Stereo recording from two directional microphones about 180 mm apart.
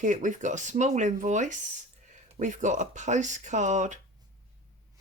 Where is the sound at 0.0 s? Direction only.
45° right (ahead or behind).